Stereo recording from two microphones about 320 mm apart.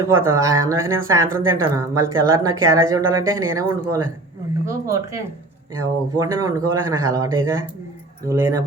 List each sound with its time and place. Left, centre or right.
0.0 s speech: centre